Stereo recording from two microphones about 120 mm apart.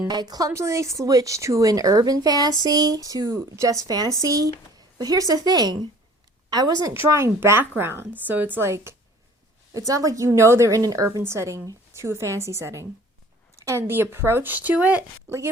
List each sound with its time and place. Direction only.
0.1 s a woman's voice: 35° right (ahead or behind); by 15.0 s 15° right (ahead or behind)